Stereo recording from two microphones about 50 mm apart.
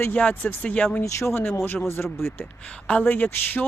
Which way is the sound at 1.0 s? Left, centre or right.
Left.